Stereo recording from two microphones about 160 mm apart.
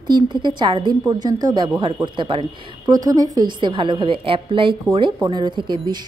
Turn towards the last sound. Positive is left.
turn(degrees=-30)  # may be behind; listen again after turning